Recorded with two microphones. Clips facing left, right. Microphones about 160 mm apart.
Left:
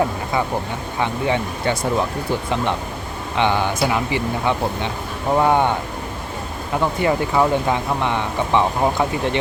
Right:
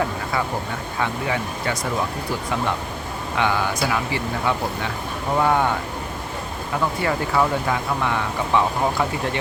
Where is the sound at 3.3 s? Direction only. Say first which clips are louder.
Left 3 dB; 25° left (ahead or behind).